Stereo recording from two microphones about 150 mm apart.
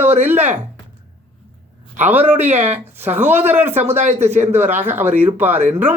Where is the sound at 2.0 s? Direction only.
10° right (ahead or behind).